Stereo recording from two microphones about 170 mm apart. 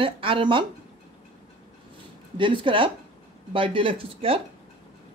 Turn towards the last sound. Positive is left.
turn(degrees=-35)  # may be behind; listen again after turning